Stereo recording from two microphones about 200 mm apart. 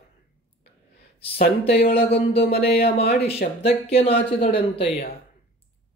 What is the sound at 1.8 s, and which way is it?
Speech, 30° left (ahead or behind).